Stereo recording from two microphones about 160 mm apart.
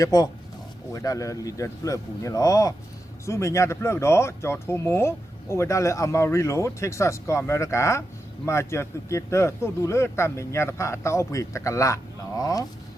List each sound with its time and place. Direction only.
0.0 s speech: 25° left (ahead or behind)